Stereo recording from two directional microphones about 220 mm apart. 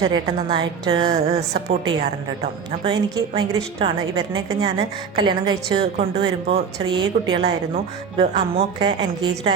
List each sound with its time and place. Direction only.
0.0 s a woman's voice: 20° right (ahead or behind)